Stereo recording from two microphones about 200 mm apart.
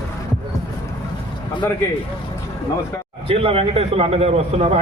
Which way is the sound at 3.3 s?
30° right (ahead or behind).